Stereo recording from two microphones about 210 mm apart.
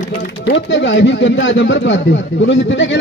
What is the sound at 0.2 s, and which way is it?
A man's voice, 55° left (ahead or behind).